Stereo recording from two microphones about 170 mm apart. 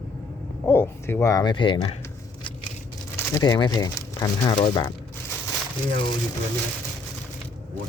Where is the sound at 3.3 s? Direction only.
20° left (ahead or behind).